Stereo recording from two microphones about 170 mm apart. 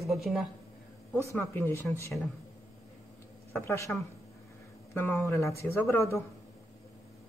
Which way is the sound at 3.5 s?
15° left (ahead or behind).